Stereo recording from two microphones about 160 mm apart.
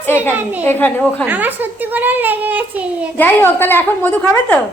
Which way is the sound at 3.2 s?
10° left (ahead or behind).